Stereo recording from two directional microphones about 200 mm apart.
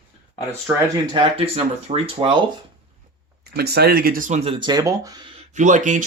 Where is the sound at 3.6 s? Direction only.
55° right (ahead or behind); by 4.5 s 35° right (ahead or behind).